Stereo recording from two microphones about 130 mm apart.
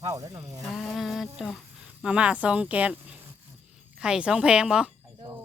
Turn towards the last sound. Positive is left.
turn(degrees=-5)  # may be behind; listen again after turning